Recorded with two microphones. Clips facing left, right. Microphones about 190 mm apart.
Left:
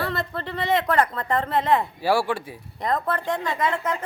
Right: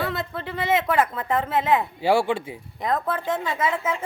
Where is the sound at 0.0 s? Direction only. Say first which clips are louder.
Even; centre (ahead or behind).